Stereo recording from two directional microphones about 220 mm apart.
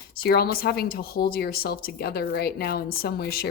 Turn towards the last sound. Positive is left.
turn(degrees=45)  # may be behind; listen again after turning